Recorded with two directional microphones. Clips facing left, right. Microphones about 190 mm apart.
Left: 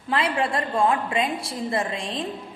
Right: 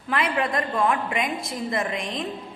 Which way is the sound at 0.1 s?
30° left (ahead or behind).